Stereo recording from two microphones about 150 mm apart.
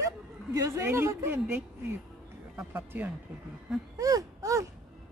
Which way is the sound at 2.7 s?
10° right (ahead or behind).